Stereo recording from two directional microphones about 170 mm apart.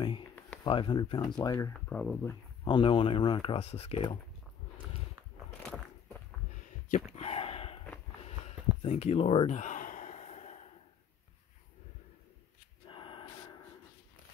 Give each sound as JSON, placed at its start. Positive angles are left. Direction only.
{"t": 0.7, "sound": "speech", "side_deg": 30}
{"t": 1.7, "sound": "speech", "side_deg": 5}
{"t": 2.6, "sound": "speech", "side_deg": 30}
{"t": 5.6, "sound": "a sound", "side_deg": 5}
{"t": 6.9, "sound": "a sound", "side_deg": 40}
{"t": 12.8, "sound": "gasp", "side_deg": 30}